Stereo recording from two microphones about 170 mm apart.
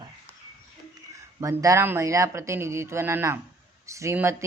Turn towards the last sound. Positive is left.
turn(degrees=-15)  # may be behind; listen again after turning